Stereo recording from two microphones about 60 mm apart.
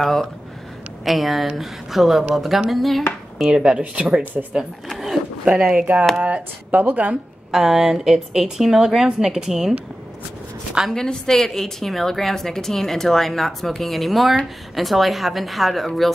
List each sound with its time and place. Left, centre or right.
0.0 s a woman's voice: centre
3.3 s a woman's voice: centre
4.8 s a sound: centre
5.4 s a woman's voice: centre
6.2 s a woman's voice: right
7.5 s a woman's voice: centre
10.9 s a woman's voice: centre